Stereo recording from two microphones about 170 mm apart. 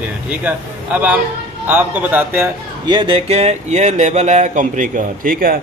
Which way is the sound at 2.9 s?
30° right (ahead or behind).